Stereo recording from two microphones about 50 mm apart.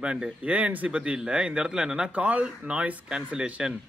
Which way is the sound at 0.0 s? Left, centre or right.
Right.